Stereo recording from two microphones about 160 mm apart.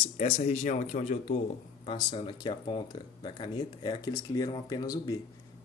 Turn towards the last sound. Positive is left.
turn(degrees=25)  # may be behind; listen again after turning